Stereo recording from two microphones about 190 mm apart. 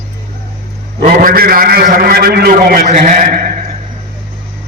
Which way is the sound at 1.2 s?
50° right (ahead or behind).